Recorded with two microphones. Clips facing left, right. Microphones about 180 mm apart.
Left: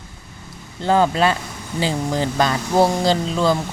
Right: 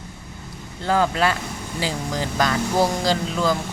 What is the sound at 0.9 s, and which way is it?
Speech, 25° left (ahead or behind).